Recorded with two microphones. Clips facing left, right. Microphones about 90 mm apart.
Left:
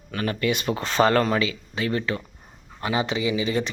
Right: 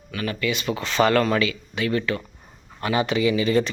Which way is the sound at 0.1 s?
40° left (ahead or behind).